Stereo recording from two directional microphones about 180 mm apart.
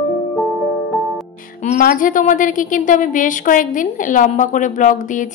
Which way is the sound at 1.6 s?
45° left (ahead or behind).